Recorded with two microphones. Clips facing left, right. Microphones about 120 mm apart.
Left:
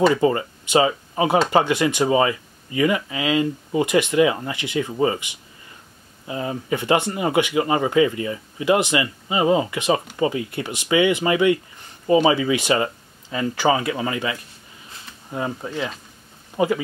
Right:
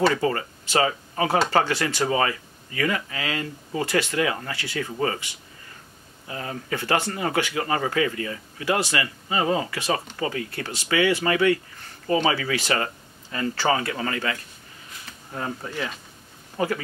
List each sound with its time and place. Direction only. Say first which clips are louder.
0.1 s speech: left 5 dB; 20° left (ahead or behind)